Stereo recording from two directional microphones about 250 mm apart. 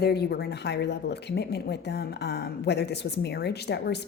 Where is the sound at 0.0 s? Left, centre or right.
Left.